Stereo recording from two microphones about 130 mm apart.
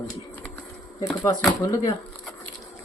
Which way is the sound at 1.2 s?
25° left (ahead or behind).